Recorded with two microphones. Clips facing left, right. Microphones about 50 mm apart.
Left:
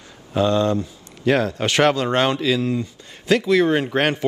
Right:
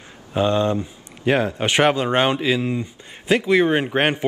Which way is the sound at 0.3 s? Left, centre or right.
Right.